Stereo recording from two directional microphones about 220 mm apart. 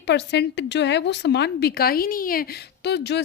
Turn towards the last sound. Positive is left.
turn(degrees=50)  # may be behind; listen again after turning